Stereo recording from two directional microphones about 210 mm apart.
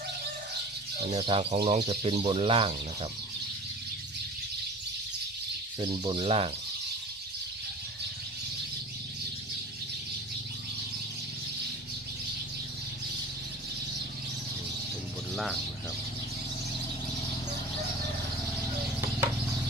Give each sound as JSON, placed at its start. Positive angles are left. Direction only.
{"t": 1.1, "sound": "speech", "side_deg": -30}
{"t": 5.8, "sound": "speech", "side_deg": -25}